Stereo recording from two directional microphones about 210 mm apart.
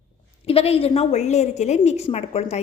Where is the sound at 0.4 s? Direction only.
30° left (ahead or behind).